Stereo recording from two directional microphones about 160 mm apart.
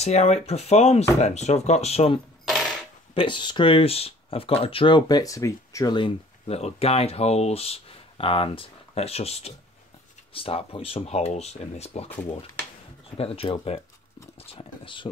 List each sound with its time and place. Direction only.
0.0 s speech: 45° left (ahead or behind)
2.4 s coin: centre (ahead or behind)
3.2 s speech: 30° left (ahead or behind)
13.2 s speech: 35° left (ahead or behind)